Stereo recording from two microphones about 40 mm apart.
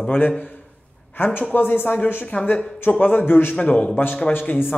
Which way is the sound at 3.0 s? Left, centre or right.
Left.